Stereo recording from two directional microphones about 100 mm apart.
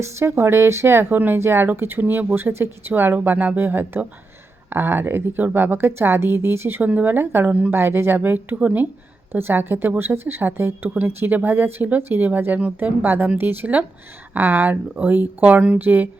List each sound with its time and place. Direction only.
0.2 s a woman's voice: 25° right (ahead or behind)